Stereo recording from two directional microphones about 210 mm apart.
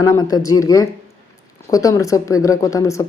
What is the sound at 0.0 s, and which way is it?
A woman's voice, 15° left (ahead or behind).